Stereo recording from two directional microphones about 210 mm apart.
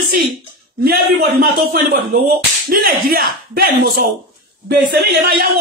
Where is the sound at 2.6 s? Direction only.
45° right (ahead or behind).